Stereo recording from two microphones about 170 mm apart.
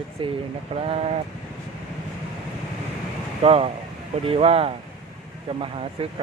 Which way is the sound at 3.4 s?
35° right (ahead or behind).